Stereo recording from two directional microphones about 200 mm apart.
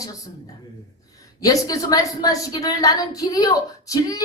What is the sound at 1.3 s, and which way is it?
Speech, 20° left (ahead or behind).